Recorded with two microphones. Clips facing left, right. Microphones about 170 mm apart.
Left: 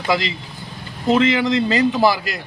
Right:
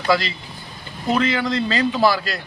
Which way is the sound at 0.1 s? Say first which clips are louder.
Right 1 dB; 20° left (ahead or behind).